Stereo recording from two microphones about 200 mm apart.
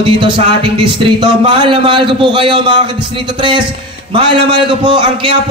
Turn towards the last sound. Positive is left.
turn(degrees=-25)  # may be behind; listen again after turning